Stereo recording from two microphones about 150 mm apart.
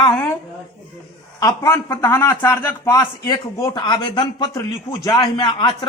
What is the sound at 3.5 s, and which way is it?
A man's voice, 30° left (ahead or behind).